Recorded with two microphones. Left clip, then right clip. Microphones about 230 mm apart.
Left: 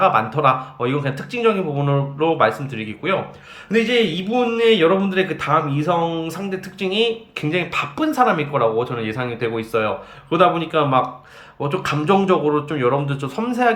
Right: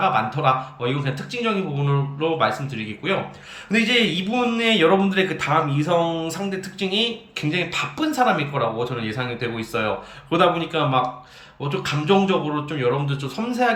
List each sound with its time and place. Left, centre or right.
0.0 s speech: centre